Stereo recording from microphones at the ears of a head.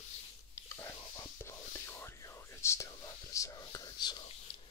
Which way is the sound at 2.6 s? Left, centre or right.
Left.